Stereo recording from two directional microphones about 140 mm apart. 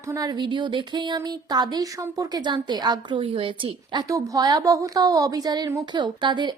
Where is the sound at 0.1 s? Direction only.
30° right (ahead or behind).